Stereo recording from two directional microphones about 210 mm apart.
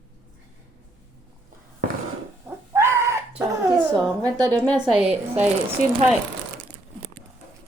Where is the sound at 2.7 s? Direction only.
15° right (ahead or behind).